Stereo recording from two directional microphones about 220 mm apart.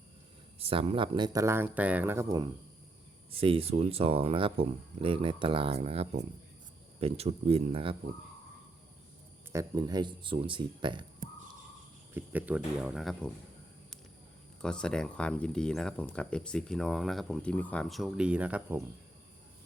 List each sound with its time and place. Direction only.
0.6 s speech: 25° right (ahead or behind)
3.4 s speech: 25° right (ahead or behind)
9.5 s speech: 15° right (ahead or behind)
11.2 s a sound: 40° right (ahead or behind)
12.1 s speech: 10° right (ahead or behind)
14.6 s speech: 5° left (ahead or behind)